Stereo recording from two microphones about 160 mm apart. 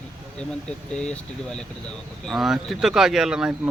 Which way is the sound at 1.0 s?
5° left (ahead or behind).